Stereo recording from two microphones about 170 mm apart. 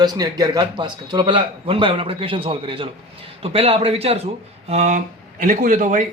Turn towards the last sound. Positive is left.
turn(degrees=-50)  # may be behind; listen again after turning